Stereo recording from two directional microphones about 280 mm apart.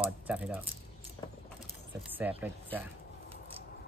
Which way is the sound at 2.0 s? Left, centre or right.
Centre.